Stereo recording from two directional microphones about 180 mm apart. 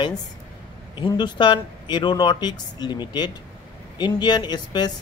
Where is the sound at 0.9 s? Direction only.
25° left (ahead or behind).